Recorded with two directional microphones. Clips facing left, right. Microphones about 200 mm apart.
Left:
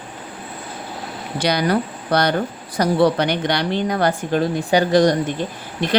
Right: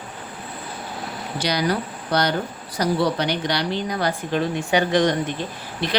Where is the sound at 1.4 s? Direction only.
55° left (ahead or behind).